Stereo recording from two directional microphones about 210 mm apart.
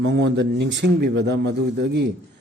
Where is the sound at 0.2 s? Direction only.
60° right (ahead or behind).